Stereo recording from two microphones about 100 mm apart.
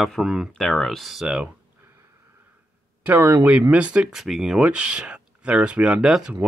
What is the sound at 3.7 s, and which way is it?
Speech, 10° right (ahead or behind).